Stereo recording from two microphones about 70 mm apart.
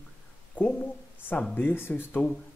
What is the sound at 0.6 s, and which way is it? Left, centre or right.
Speech, left.